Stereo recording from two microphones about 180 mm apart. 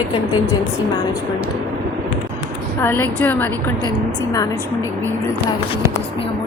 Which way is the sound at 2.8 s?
10° left (ahead or behind).